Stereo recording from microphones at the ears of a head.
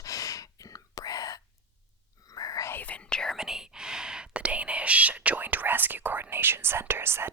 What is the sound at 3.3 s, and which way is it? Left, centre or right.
Whispering, centre.